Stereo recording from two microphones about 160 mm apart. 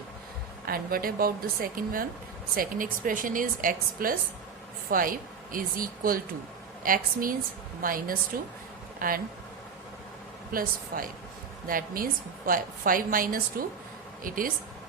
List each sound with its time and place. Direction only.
0.7 s a woman's voice: 65° right (ahead or behind)
10.5 s a woman's voice: 60° right (ahead or behind)